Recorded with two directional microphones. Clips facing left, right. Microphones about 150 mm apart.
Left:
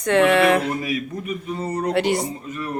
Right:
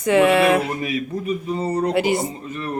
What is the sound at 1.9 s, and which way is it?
Speech, 5° right (ahead or behind).